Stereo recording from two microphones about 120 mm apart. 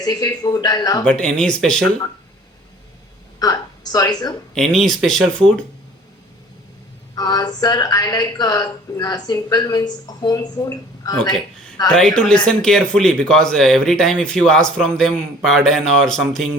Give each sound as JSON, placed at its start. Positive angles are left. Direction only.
{"t": 0.0, "sound": "a woman's voice", "side_deg": 35}
{"t": 1.0, "sound": "speech", "side_deg": 5}
{"t": 3.4, "sound": "a woman's voice", "side_deg": 30}
{"t": 4.5, "sound": "speech", "side_deg": 5}
{"t": 7.2, "sound": "a woman's voice", "side_deg": 30}
{"t": 11.9, "sound": "speech", "side_deg": 5}